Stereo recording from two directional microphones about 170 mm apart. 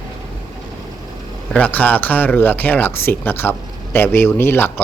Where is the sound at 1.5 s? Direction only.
10° left (ahead or behind).